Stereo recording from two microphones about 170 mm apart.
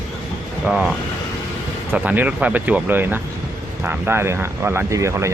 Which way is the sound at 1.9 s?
10° right (ahead or behind).